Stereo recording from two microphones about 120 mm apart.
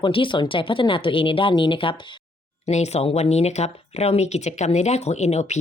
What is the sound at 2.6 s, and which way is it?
Speech, 65° left (ahead or behind).